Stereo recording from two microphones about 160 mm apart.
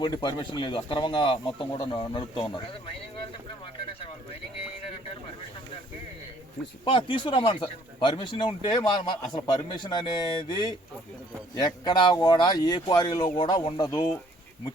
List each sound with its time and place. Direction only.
0.0 s speech: 25° left (ahead or behind)
6.8 s speech: 30° left (ahead or behind)